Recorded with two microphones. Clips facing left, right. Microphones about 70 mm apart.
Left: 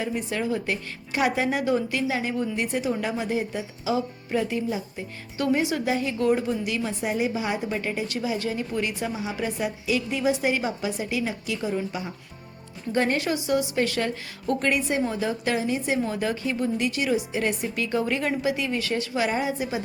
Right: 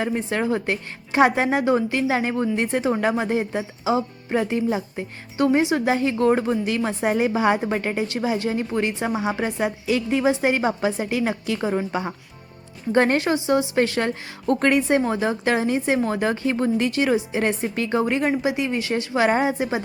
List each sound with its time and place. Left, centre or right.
0.0 s a woman's voice: right
5.4 s a woman's voice: right
8.4 s a woman's voice: right
9.1 s a woman's voice: right
13.2 s a woman's voice: right
16.0 s a woman's voice: right
18.0 s a woman's voice: right
19.1 s a woman's voice: right